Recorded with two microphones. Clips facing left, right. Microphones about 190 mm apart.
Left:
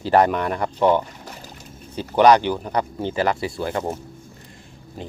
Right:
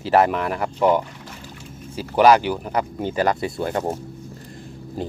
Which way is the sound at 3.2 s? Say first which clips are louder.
Right 1 dB; 25° right (ahead or behind).